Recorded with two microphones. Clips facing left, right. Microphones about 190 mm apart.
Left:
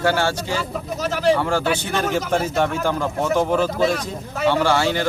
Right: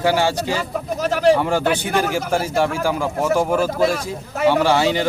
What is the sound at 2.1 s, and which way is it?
Speech, 5° right (ahead or behind).